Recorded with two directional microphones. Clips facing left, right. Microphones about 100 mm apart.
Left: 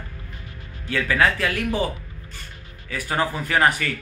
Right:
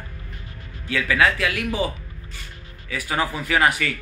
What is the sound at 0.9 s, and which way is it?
Speech, 35° left (ahead or behind).